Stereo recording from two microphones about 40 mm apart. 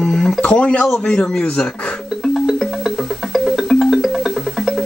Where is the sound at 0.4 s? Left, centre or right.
Left.